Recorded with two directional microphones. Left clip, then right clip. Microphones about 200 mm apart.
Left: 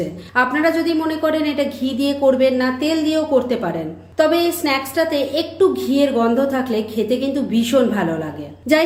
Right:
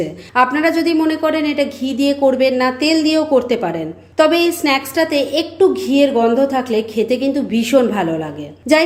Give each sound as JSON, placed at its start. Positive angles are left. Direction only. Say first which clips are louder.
{"t": 0.3, "sound": "a woman's voice", "louder": "right 3 dB", "side_deg": -30}